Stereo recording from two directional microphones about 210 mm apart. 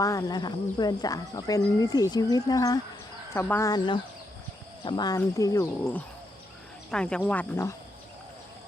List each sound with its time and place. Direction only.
0.0 s speech: 15° left (ahead or behind)